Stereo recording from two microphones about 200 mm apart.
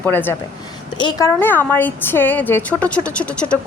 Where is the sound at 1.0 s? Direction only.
20° left (ahead or behind).